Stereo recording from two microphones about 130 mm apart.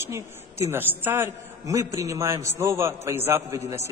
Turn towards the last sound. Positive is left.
turn(degrees=-25)  # may be behind; listen again after turning